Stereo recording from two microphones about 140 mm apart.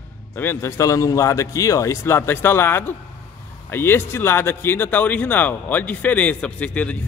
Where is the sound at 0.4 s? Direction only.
15° left (ahead or behind).